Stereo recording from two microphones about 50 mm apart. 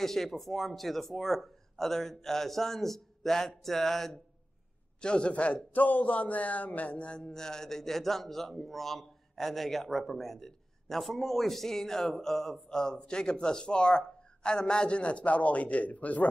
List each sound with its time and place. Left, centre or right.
0.0 s speech: centre
5.0 s a man's voice: left